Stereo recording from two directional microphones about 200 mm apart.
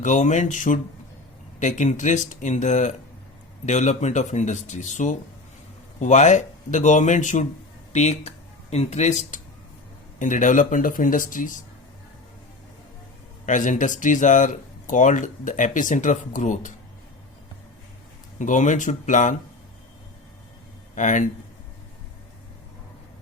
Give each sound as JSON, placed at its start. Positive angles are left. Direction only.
{"t": 0.0, "sound": "speech", "side_deg": 35}
{"t": 13.4, "sound": "speech", "side_deg": 40}
{"t": 18.3, "sound": "speech", "side_deg": 40}
{"t": 20.9, "sound": "speech", "side_deg": 40}